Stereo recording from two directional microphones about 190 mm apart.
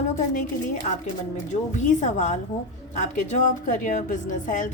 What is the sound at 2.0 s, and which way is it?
A woman's voice, 40° left (ahead or behind).